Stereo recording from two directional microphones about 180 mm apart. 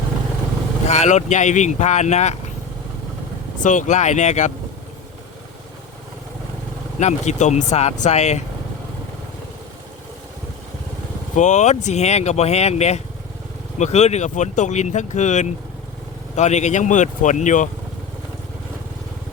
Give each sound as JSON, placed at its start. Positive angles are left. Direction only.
{"t": 0.9, "sound": "speech", "side_deg": 40}
{"t": 3.6, "sound": "speech", "side_deg": 45}
{"t": 7.0, "sound": "speech", "side_deg": 40}
{"t": 11.3, "sound": "speech", "side_deg": 40}